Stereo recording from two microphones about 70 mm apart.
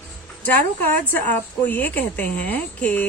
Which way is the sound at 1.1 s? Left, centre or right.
Left.